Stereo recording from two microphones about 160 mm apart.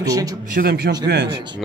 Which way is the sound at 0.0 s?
20° right (ahead or behind).